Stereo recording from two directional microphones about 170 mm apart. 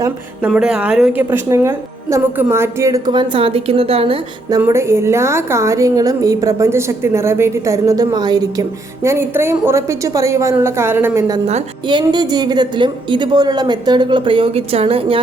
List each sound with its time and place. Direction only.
0.4 s a woman's voice: 5° right (ahead or behind); by 4.5 s 35° right (ahead or behind)
4.5 s a woman's voice: 15° right (ahead or behind)
11.9 s a woman's voice: 25° right (ahead or behind)